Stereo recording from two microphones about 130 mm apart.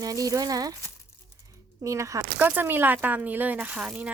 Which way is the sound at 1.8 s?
25° right (ahead or behind).